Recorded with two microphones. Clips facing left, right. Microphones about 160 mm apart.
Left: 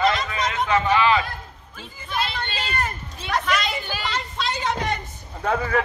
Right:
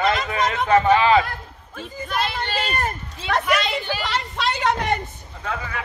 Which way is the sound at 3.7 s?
70° right (ahead or behind).